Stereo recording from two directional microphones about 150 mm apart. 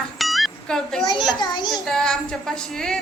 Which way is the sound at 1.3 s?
30° left (ahead or behind).